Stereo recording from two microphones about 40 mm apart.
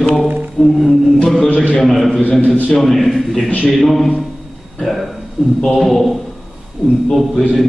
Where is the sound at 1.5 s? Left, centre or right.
Left.